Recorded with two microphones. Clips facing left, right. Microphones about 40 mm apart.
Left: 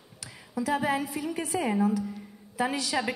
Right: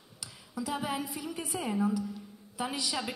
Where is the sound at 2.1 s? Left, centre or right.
Centre.